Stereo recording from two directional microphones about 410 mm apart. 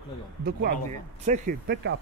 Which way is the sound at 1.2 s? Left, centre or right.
Centre.